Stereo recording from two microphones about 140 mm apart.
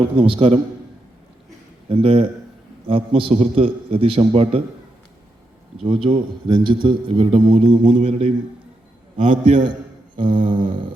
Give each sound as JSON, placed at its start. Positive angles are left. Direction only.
{"t": 0.0, "sound": "a man's voice", "side_deg": -40}
{"t": 1.9, "sound": "a man's voice", "side_deg": -45}
{"t": 5.8, "sound": "a man's voice", "side_deg": -40}